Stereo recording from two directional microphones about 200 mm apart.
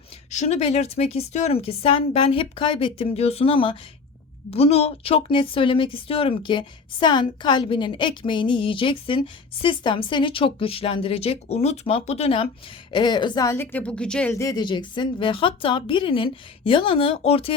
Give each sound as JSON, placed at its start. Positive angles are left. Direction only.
{"t": 0.3, "sound": "speech", "side_deg": 35}